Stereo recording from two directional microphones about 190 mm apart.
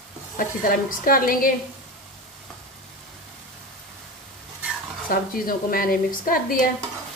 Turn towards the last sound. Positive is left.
turn(degrees=45)  # may be behind; listen again after turning